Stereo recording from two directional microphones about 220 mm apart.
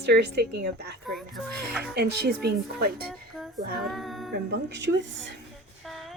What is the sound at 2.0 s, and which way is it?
Speech, 50° right (ahead or behind).